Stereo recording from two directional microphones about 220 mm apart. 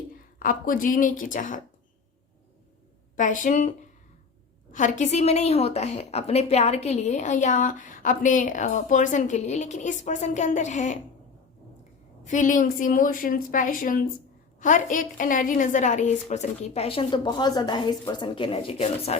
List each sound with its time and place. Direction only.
0.2 s a woman's voice: 40° left (ahead or behind)
3.2 s a woman's voice: 35° left (ahead or behind)
12.2 s a woman's voice: 35° left (ahead or behind)